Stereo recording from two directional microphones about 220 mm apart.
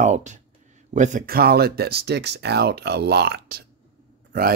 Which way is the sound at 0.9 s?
35° right (ahead or behind).